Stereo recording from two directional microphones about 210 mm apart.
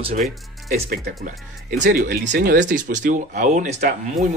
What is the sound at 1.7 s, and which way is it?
Speech, 40° right (ahead or behind).